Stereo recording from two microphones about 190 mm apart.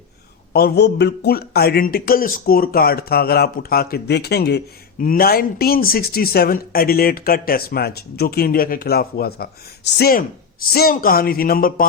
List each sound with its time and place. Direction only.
0.5 s a man's voice: 60° left (ahead or behind)